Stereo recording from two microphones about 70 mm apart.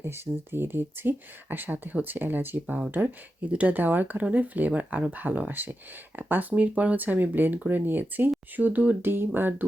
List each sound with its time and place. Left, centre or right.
0.0 s speech: right